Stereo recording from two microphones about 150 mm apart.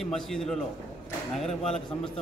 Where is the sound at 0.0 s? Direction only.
5° left (ahead or behind).